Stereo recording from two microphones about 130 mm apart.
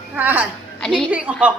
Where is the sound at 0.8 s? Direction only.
5° left (ahead or behind).